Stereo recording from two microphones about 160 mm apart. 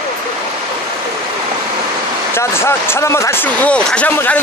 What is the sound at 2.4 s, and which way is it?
Speech, 15° left (ahead or behind).